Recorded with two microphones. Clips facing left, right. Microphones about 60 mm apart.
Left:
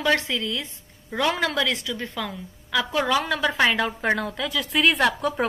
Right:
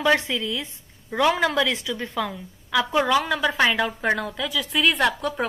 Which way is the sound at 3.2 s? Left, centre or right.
Centre.